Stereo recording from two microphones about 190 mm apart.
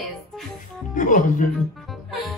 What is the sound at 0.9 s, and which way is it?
Speech, 45° left (ahead or behind).